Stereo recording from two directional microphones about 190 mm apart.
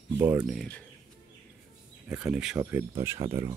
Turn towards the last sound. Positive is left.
turn(degrees=-15)  # may be behind; listen again after turning